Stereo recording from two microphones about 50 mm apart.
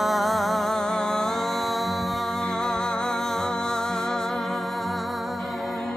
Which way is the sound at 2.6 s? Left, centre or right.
Centre.